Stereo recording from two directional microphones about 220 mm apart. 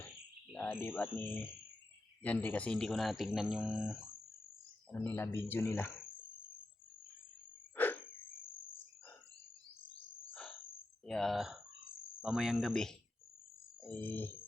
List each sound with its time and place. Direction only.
0.5 s speech: 5° left (ahead or behind)
4.9 s speech: 10° left (ahead or behind)
7.8 s cricket: 10° left (ahead or behind)
11.0 s speech: centre (ahead or behind)